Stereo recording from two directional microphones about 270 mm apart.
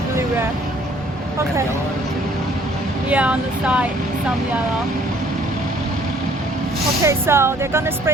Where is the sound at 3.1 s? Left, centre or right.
Centre.